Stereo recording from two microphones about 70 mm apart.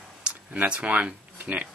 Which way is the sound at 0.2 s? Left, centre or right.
Centre.